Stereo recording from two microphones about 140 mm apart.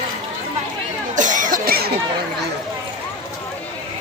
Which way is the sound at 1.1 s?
65° right (ahead or behind).